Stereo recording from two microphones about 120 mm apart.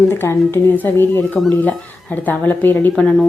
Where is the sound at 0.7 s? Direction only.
20° left (ahead or behind).